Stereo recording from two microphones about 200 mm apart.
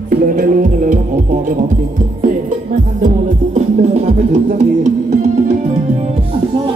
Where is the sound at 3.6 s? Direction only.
35° right (ahead or behind).